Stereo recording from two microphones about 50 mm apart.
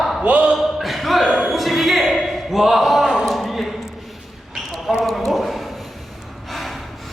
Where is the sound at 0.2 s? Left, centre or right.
Right.